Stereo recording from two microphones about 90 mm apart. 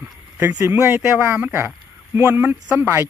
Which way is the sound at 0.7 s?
25° right (ahead or behind).